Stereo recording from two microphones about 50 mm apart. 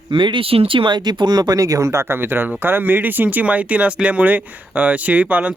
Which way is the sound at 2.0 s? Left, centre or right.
Right.